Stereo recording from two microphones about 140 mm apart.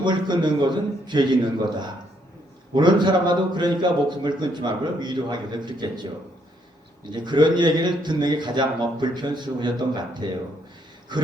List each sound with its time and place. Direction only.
0.0 s a man's voice: 30° right (ahead or behind)
2.7 s a man's voice: 30° right (ahead or behind)